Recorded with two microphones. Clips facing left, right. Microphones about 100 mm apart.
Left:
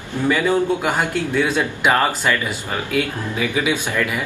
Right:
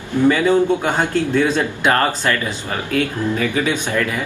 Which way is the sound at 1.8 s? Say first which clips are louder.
Left 1 dB; 10° left (ahead or behind).